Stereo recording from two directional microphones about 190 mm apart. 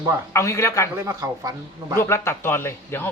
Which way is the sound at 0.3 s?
15° left (ahead or behind).